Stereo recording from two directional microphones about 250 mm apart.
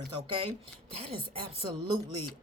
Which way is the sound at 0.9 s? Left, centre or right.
Right.